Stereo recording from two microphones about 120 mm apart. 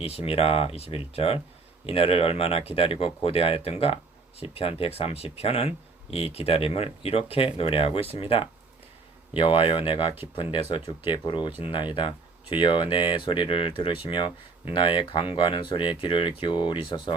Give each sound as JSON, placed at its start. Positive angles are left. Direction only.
{"t": 0.0, "sound": "speech", "side_deg": 55}